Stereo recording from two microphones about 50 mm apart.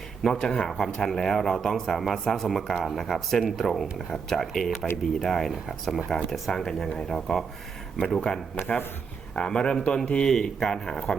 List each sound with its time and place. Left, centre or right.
0.2 s speech: centre
8.5 s speech: left
9.3 s a man's voice: centre